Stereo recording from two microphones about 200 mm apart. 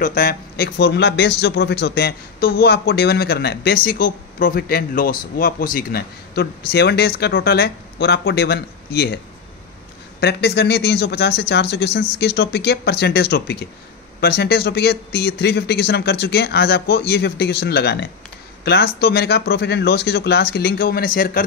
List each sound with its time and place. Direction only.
0.0 s a man's voice: 45° left (ahead or behind)
10.2 s a man's voice: 55° left (ahead or behind)